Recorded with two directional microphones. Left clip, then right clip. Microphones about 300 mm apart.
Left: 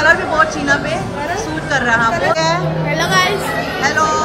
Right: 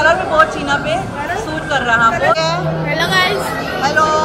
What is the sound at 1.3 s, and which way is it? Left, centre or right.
Speech, centre.